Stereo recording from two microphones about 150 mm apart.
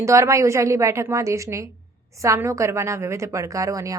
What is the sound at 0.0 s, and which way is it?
A woman's voice, 20° right (ahead or behind).